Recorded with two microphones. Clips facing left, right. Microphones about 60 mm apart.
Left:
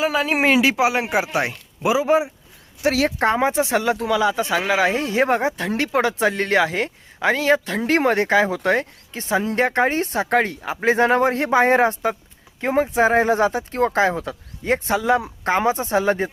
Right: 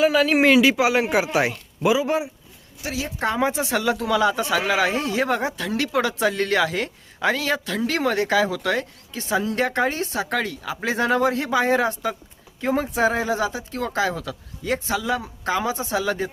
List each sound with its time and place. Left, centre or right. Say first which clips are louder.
0.0 s speech: right 2 dB; centre
2.0 s speech: left 5 dB; left
2.8 s speech: left 10 dB; left
3.3 s speech: left 3 dB; left
4.1 s speech: even; centre
4.4 s speech: left 2 dB; left
12.6 s speech: left 3 dB; left
14.9 s speech: left 8 dB; left
15.4 s speech: left 4 dB; left